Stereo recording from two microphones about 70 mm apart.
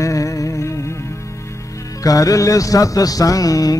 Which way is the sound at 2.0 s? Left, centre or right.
Left.